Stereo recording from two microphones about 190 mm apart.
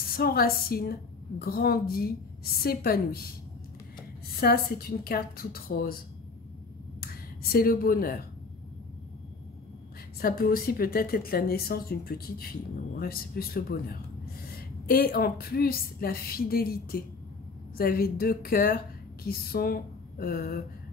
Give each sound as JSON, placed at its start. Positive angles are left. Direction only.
{"t": 0.1, "sound": "a woman's voice", "side_deg": 50}
{"t": 4.3, "sound": "a woman's voice", "side_deg": 55}
{"t": 7.5, "sound": "a woman's voice", "side_deg": 50}
{"t": 10.2, "sound": "a woman's voice", "side_deg": 50}